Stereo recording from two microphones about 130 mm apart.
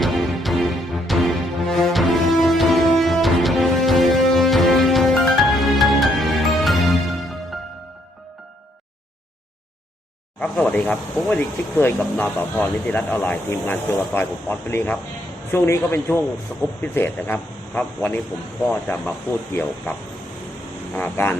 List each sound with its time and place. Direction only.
0.0 s music: centre (ahead or behind)
10.4 s a man's voice: 10° left (ahead or behind)
16.5 s speech: 5° left (ahead or behind)
16.8 s speech: 15° left (ahead or behind)
20.9 s speech: 15° left (ahead or behind)